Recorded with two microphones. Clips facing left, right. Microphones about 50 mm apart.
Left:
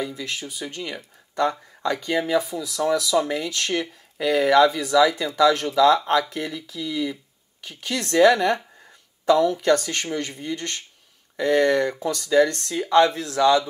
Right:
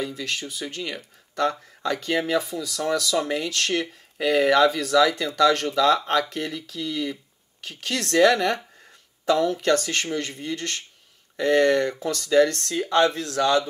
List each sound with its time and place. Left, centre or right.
0.0 s speech: centre
3.7 s speech: centre
4.3 s speech: right
4.6 s speech: centre
9.2 s speech: left